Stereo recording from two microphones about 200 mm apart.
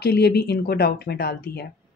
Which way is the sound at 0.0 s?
55° left (ahead or behind).